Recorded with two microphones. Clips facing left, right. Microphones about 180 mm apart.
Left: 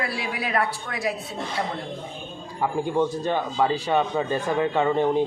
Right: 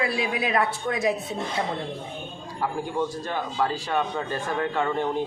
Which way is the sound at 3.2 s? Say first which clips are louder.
Left 4 dB; 15° left (ahead or behind).